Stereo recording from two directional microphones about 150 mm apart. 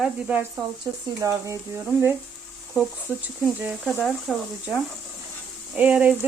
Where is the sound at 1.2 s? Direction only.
20° right (ahead or behind).